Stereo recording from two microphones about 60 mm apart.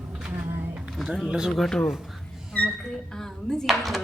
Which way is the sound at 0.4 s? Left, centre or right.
Right.